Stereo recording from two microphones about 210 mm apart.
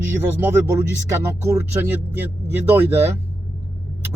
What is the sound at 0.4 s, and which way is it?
Speech, 15° right (ahead or behind).